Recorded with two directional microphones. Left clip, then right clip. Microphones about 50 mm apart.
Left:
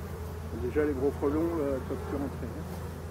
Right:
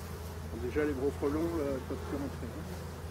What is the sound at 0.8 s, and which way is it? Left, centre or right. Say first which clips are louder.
Speech: left 4 dB; right.